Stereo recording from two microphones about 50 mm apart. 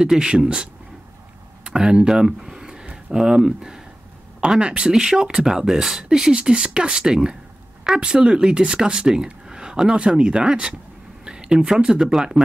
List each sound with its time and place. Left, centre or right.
0.0 s speech: centre
1.6 s a sound: centre
3.1 s speech: centre